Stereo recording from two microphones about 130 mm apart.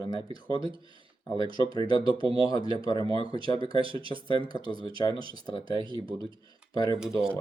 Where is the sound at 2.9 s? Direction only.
30° left (ahead or behind).